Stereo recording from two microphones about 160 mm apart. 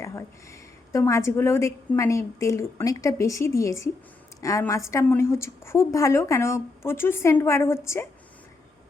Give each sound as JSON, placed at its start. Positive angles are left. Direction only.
{"t": 0.0, "sound": "a woman's voice", "side_deg": 20}